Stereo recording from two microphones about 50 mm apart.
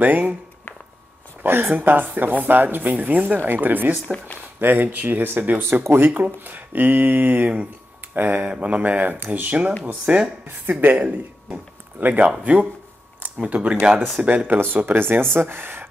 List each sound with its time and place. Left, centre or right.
0.0 s speech: right
1.4 s speech: right
1.7 s speech: right
5.6 s speech: right
6.1 s speech: right
10.0 s speech: centre
10.7 s speech: right
13.4 s speech: right
13.9 s speech: centre
14.2 s speech: right
15.0 s speech: right